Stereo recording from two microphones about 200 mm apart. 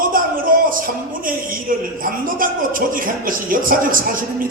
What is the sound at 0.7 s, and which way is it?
A man's voice, 45° right (ahead or behind).